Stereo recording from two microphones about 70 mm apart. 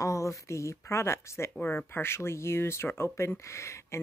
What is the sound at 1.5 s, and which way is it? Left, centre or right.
Speech, left.